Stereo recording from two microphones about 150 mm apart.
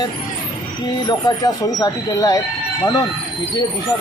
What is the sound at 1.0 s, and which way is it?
Speech, 25° left (ahead or behind).